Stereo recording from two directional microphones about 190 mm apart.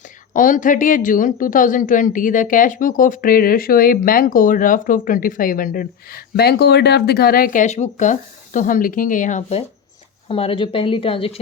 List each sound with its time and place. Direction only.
0.3 s a woman's voice: 45° left (ahead or behind)